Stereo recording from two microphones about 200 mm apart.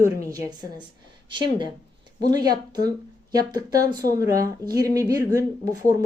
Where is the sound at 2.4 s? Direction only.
20° right (ahead or behind).